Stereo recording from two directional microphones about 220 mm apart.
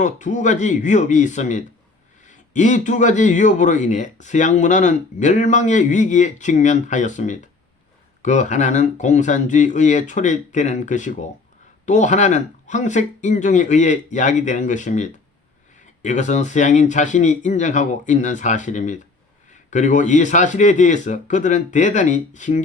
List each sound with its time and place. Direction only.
0.0 s a man's voice: 35° left (ahead or behind)